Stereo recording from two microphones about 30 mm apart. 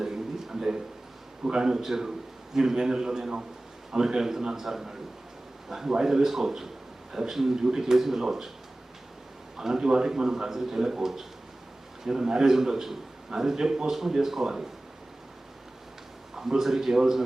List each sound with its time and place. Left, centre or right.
0.0 s a sound: centre
1.5 s a man's voice: right
9.6 s a man's voice: centre
16.3 s a man's voice: centre